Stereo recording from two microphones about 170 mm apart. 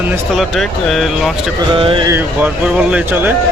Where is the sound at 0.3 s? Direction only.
Centre (ahead or behind).